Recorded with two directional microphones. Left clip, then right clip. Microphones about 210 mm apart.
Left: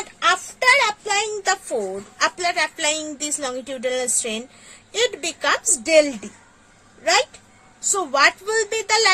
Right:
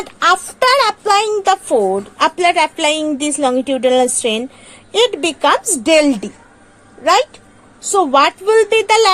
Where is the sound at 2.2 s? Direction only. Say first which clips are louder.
Right 8 dB; 15° right (ahead or behind).